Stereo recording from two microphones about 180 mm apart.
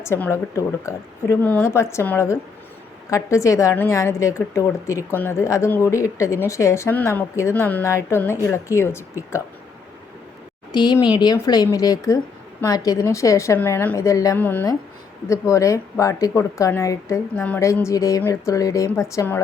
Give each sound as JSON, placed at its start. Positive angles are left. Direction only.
{"t": 0.0, "sound": "a woman's voice", "side_deg": 15}
{"t": 10.7, "sound": "a woman's voice", "side_deg": 25}